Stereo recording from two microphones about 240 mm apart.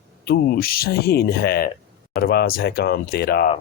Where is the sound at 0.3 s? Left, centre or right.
Left.